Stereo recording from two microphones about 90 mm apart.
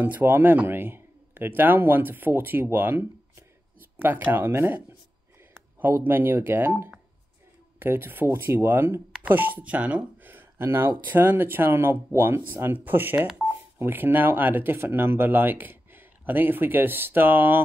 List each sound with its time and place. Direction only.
0.0 s speech: 20° right (ahead or behind)